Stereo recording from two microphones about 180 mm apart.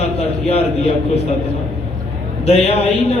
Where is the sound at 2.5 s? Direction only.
35° left (ahead or behind).